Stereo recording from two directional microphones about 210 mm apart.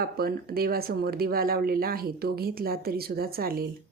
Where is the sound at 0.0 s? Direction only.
45° right (ahead or behind).